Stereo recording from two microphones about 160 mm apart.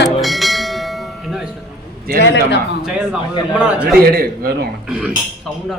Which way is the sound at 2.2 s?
90° left.